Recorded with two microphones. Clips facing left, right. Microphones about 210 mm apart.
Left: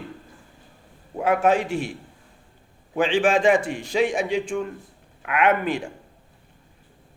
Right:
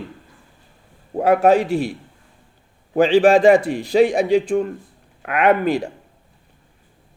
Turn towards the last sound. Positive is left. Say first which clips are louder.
# right 5 dB
turn(degrees=-35)  # may be behind; listen again after turning